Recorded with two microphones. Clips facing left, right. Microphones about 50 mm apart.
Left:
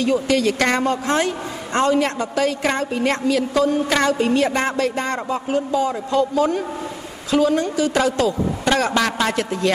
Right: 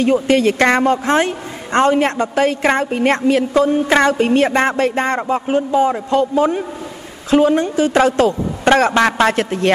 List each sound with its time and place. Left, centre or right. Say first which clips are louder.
0.0 s a man's voice: right 4 dB; right